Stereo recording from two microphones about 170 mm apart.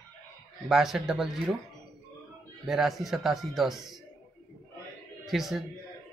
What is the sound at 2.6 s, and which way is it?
A man's voice, centre (ahead or behind).